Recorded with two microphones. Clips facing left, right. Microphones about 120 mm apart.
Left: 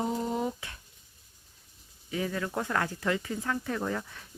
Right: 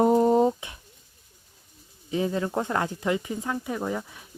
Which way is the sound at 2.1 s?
25° right (ahead or behind).